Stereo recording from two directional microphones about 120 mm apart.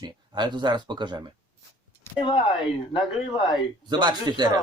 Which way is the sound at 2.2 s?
45° left (ahead or behind).